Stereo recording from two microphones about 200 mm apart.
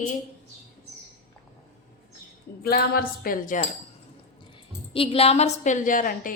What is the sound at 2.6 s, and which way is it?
Cutlery, 50° left (ahead or behind).